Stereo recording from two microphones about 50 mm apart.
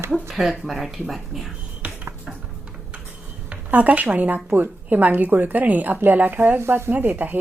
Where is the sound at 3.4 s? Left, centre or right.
Right.